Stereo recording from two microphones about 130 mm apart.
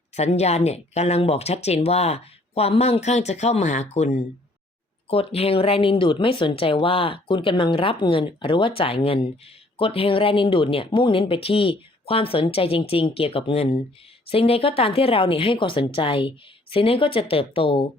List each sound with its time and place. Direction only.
0.2 s speech: 55° left (ahead or behind)